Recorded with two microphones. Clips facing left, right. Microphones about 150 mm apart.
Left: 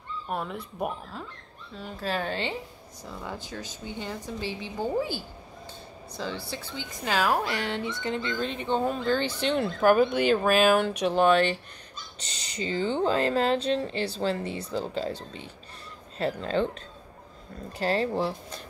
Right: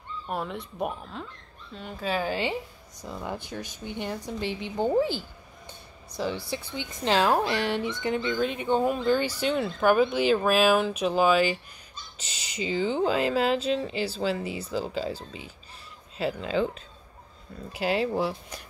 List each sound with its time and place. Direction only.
0.3 s speech: centre (ahead or behind)
3.0 s speech: 15° right (ahead or behind)
17.7 s speech: 5° right (ahead or behind)